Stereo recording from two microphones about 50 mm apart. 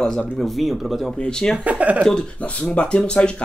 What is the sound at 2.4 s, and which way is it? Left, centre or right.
Speech, left.